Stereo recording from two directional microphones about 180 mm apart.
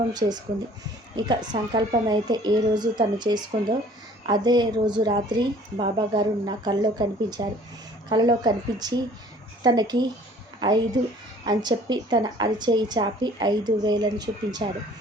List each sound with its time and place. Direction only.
0.1 s a woman's voice: 25° right (ahead or behind)